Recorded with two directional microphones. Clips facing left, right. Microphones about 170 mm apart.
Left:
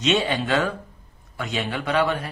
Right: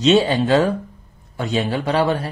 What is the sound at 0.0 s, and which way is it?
Speech, 35° right (ahead or behind).